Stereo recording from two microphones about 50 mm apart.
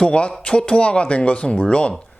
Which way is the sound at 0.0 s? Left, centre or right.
Centre.